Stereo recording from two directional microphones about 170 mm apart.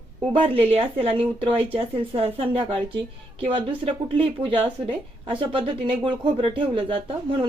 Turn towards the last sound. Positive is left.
turn(degrees=-30)  # may be behind; listen again after turning